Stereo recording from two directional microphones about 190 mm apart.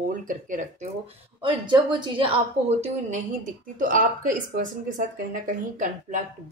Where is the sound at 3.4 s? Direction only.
45° right (ahead or behind).